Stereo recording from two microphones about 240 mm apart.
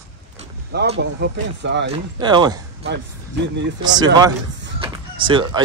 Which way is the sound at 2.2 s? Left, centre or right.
Centre.